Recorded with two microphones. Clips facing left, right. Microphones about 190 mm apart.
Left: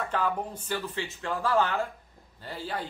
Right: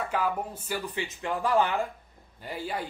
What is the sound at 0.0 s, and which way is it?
Speech, 10° right (ahead or behind).